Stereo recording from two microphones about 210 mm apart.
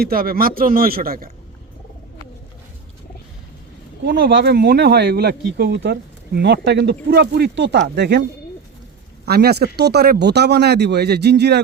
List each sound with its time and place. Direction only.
0.0 s speech: 45° right (ahead or behind)
4.0 s speech: 55° right (ahead or behind)
9.2 s speech: 50° right (ahead or behind)